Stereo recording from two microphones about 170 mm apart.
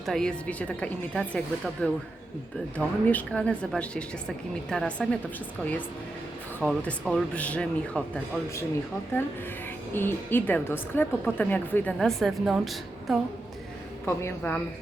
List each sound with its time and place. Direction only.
0.0 s a woman's voice: centre (ahead or behind)
6.6 s a woman's voice: 5° left (ahead or behind)
9.9 s a woman's voice: 10° left (ahead or behind)
14.0 s a woman's voice: 15° left (ahead or behind)